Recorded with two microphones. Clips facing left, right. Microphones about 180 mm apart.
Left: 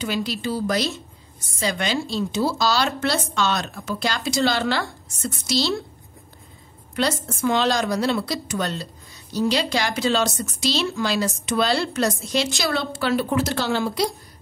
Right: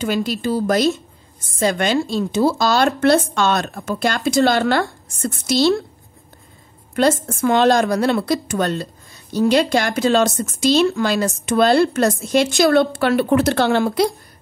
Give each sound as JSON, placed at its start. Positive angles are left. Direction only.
{"t": 0.0, "sound": "a woman's voice", "side_deg": -50}
{"t": 7.0, "sound": "a woman's voice", "side_deg": -50}